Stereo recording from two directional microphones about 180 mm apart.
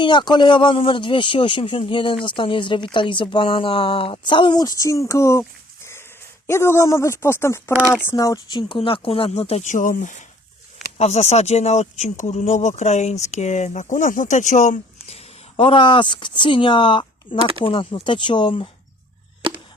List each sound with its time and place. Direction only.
0.0 s speech: 25° left (ahead or behind)
7.7 s speech: 15° right (ahead or behind)
7.9 s speech: 15° left (ahead or behind)